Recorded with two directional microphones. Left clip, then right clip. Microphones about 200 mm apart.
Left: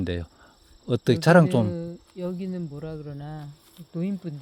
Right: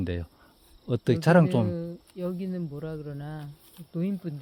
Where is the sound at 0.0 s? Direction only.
10° left (ahead or behind).